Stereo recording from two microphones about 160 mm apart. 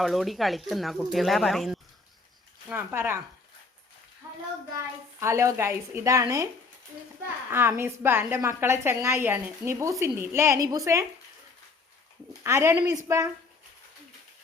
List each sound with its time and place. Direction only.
0.0 s speech: centre (ahead or behind)
2.6 s a woman's voice: 15° right (ahead or behind)
5.2 s a woman's voice: 20° right (ahead or behind)
7.5 s a woman's voice: 15° right (ahead or behind)
12.4 s a woman's voice: 15° right (ahead or behind)